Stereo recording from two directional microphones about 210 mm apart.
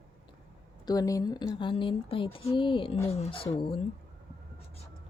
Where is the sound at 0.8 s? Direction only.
15° left (ahead or behind).